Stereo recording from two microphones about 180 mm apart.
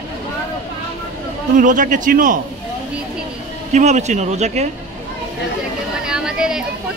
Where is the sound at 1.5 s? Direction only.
45° right (ahead or behind).